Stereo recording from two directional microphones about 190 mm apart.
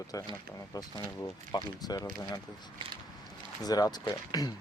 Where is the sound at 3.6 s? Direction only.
20° left (ahead or behind).